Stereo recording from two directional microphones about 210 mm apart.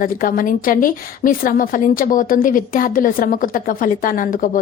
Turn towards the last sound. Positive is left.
turn(degrees=40)  # may be behind; listen again after turning